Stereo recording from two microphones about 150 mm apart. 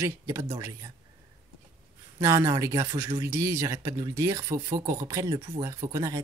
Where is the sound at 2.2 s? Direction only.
20° right (ahead or behind).